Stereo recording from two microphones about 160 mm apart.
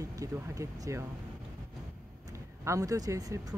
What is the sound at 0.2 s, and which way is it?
Speech, 20° right (ahead or behind).